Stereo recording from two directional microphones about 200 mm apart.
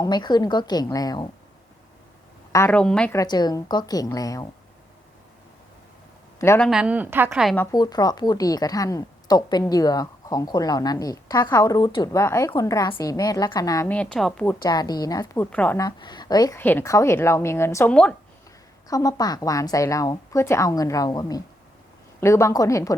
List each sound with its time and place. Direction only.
0.0 s a woman's voice: 20° left (ahead or behind)
2.5 s a woman's voice: 10° left (ahead or behind)
3.2 s a woman's voice: 20° left (ahead or behind)
6.4 s speech: 15° left (ahead or behind)
6.7 s a woman's voice: 5° right (ahead or behind)
7.5 s a woman's voice: 15° left (ahead or behind)
14.6 s a woman's voice: 20° left (ahead or behind)
16.0 s a woman's voice: 20° left (ahead or behind)
18.9 s a woman's voice: 15° left (ahead or behind)